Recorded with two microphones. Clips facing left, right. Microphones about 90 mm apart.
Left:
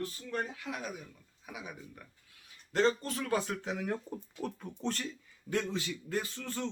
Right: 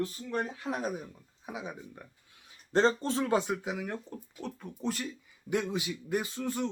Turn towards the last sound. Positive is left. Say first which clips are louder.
# right 5 dB
turn(degrees=-15)  # may be behind; listen again after turning